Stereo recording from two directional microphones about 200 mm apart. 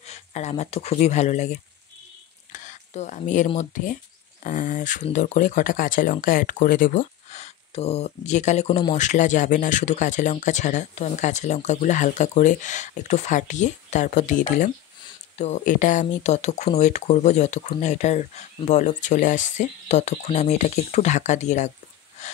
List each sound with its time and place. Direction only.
0.0 s speech: 35° left (ahead or behind)